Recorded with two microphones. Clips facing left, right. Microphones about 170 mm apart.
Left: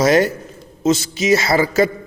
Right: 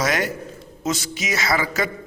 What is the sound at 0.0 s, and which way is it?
A man's voice, 30° left (ahead or behind).